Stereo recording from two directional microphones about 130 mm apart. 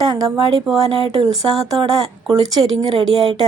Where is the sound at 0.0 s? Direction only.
30° right (ahead or behind).